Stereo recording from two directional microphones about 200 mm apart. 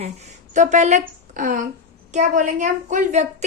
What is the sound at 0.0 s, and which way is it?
A woman's voice, 35° right (ahead or behind).